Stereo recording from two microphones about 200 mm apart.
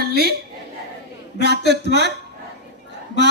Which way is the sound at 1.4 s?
55° right (ahead or behind).